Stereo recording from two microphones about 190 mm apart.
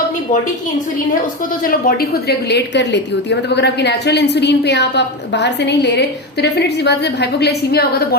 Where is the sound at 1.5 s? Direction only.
45° left (ahead or behind).